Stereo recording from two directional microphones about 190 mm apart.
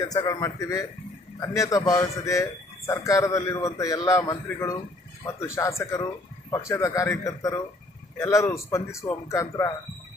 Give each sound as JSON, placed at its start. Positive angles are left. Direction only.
{"t": 0.0, "sound": "a man's voice", "side_deg": 20}